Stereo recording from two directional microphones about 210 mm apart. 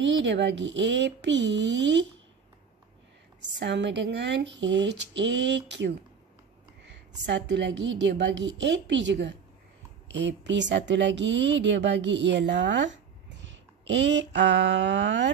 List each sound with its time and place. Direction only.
0.0 s speech: 60° right (ahead or behind)
3.4 s speech: 55° right (ahead or behind)
13.4 s a sound: 60° right (ahead or behind)